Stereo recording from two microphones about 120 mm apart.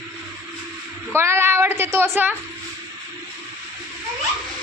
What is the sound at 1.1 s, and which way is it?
Speech, 20° right (ahead or behind).